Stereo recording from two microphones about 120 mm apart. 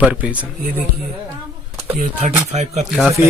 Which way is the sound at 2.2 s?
70° right (ahead or behind).